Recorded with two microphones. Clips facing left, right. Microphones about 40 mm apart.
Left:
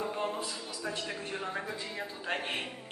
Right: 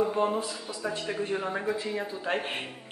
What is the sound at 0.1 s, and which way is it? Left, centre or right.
Speech, centre.